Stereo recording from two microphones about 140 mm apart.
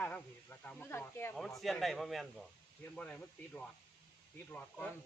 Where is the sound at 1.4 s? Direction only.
Centre (ahead or behind).